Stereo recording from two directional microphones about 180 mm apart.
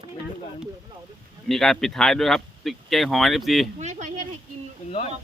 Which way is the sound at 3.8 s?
40° right (ahead or behind).